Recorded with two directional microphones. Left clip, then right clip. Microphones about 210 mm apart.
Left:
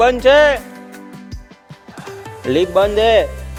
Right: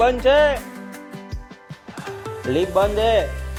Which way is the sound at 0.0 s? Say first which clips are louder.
Left 5 dB; 35° left (ahead or behind).